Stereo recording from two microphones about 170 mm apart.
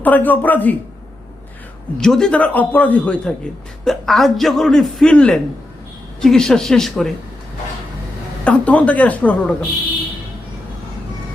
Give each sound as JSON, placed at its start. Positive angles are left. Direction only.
{"t": 0.0, "sound": "a man's voice", "side_deg": 10}
{"t": 2.0, "sound": "a man's voice", "side_deg": 5}
{"t": 8.4, "sound": "a man's voice", "side_deg": 5}